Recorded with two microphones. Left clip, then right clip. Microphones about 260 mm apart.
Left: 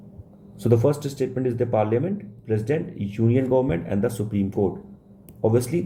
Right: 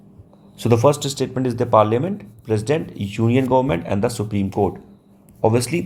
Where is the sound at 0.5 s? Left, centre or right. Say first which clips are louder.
Right 5 dB; right.